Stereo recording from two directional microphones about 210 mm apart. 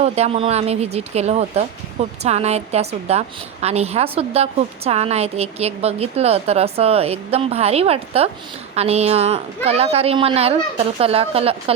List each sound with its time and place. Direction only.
0.0 s speech: 30° right (ahead or behind)